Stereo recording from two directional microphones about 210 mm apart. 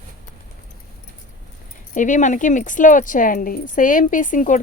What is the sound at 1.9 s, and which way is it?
A woman's voice, 35° left (ahead or behind).